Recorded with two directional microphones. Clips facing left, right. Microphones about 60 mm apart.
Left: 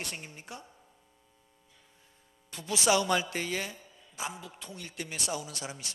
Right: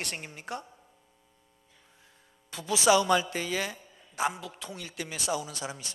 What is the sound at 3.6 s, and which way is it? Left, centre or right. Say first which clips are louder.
A man's voice: right 5 dB; right.